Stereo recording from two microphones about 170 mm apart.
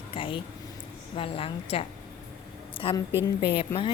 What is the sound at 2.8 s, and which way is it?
Speech, 35° left (ahead or behind).